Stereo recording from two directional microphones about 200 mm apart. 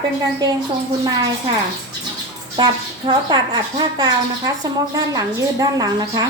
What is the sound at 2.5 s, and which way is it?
Speech, 20° right (ahead or behind).